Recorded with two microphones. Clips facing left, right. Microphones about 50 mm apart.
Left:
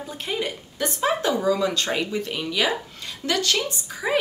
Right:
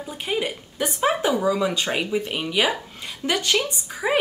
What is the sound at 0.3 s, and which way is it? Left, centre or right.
Speech, centre.